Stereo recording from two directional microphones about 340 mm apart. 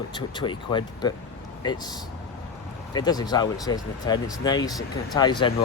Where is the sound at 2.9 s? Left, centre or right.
Centre.